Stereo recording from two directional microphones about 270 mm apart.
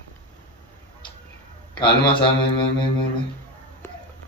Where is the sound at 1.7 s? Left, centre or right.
Centre.